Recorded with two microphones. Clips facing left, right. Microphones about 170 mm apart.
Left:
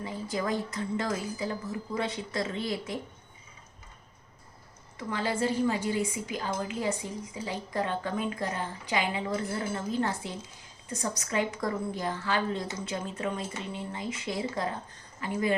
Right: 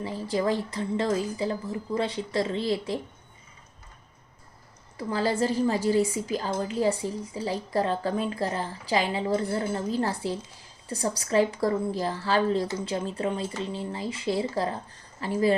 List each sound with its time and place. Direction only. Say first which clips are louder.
0.0 s a woman's voice: right 5 dB; 30° right (ahead or behind)
4.9 s a woman's voice: right 5 dB; 35° right (ahead or behind)